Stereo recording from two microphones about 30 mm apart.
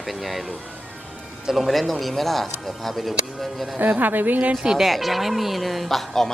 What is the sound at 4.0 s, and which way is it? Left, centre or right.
Speech, right.